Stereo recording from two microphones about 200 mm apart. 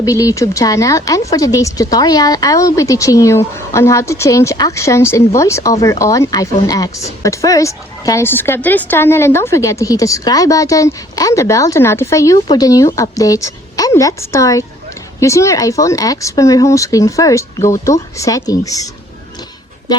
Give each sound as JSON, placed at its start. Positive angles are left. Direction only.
{"t": 0.0, "sound": "speech", "side_deg": 15}